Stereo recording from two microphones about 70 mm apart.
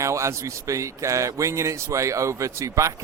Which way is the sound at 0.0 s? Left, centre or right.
Right.